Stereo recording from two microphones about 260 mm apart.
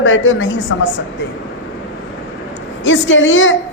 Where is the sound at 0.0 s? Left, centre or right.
Left.